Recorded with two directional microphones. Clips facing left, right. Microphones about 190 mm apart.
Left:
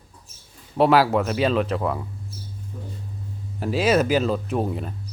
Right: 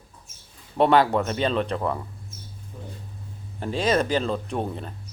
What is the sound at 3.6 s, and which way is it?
Speech, 5° left (ahead or behind).